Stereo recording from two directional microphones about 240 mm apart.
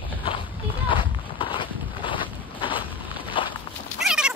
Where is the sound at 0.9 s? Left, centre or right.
Left.